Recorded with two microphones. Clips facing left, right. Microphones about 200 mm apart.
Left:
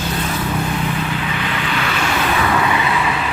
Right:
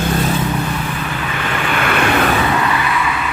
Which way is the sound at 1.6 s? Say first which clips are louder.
Right 7 dB; 55° right (ahead or behind).